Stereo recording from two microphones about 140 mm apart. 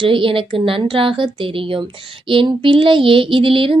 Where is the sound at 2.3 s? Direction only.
40° right (ahead or behind).